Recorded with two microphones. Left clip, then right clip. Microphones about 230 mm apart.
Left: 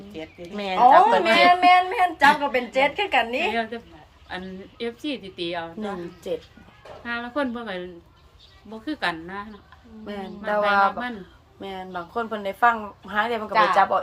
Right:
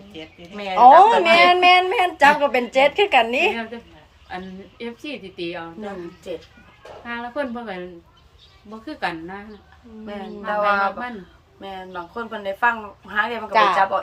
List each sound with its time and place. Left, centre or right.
0.4 s speech: left
0.8 s a woman's voice: right
3.5 s speech: centre
7.0 s speech: centre
10.1 s speech: left
11.6 s speech: left
13.5 s speech: right
13.9 s speech: left